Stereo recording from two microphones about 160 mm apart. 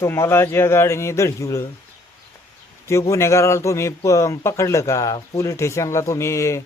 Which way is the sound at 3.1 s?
20° left (ahead or behind).